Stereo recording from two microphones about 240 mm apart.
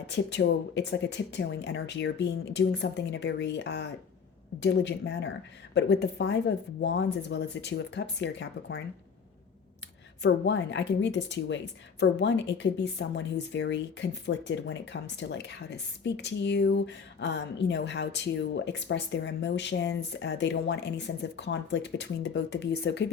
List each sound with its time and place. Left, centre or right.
0.1 s a woman's voice: left
10.2 s a woman's voice: left